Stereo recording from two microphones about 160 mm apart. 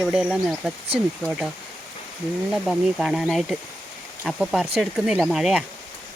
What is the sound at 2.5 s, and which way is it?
Speech, 5° right (ahead or behind).